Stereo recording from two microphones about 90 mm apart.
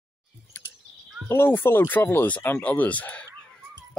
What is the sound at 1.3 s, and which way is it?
Speech, 25° left (ahead or behind).